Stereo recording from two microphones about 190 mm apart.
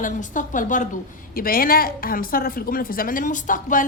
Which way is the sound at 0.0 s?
40° left (ahead or behind).